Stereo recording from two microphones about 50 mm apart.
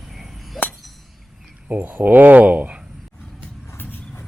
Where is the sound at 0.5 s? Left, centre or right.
Centre.